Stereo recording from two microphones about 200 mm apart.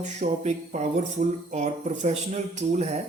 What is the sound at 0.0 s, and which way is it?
Speech, 35° right (ahead or behind).